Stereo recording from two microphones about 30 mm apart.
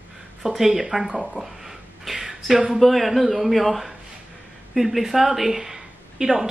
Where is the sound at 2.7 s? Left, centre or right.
Centre.